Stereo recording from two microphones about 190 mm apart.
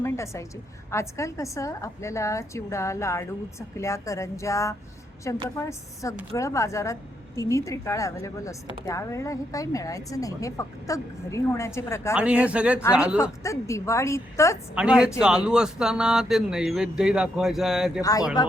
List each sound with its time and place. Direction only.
0.0 s a woman's voice: 15° left (ahead or behind)
12.1 s speech: 5° right (ahead or behind)
13.4 s a woman's voice: 15° left (ahead or behind)
14.8 s speech: 5° right (ahead or behind)
18.0 s speech: 20° left (ahead or behind)